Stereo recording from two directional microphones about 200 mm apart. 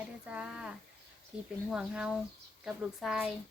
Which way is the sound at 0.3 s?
5° right (ahead or behind).